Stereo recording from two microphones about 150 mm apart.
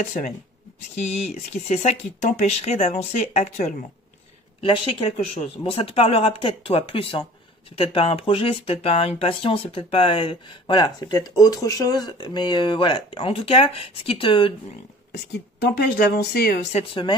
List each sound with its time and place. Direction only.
0.0 s speech: 55° left (ahead or behind)
4.6 s speech: 40° left (ahead or behind)
15.6 s speech: 90° left
16.7 s speech: 35° left (ahead or behind)